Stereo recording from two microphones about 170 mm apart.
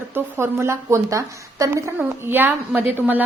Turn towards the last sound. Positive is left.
turn(degrees=-10)  # may be behind; listen again after turning